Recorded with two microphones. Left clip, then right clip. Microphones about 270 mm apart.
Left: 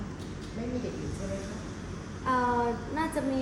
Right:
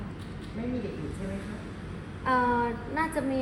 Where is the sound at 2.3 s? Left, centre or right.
Centre.